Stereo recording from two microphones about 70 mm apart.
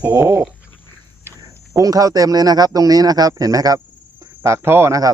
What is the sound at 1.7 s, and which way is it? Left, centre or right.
Speech, right.